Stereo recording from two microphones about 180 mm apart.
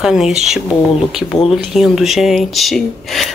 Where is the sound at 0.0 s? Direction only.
Centre (ahead or behind).